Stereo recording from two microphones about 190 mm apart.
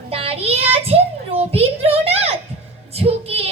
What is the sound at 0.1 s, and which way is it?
Child singing, 30° right (ahead or behind).